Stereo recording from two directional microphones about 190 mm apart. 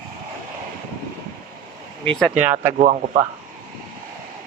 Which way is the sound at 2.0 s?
5° left (ahead or behind).